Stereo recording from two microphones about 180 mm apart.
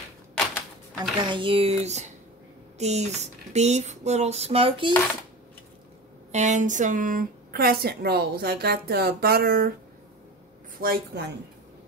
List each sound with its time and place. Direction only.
1.2 s a sound: 25° right (ahead or behind)
6.3 s a woman's voice: 40° right (ahead or behind)
10.8 s a woman's voice: 60° right (ahead or behind)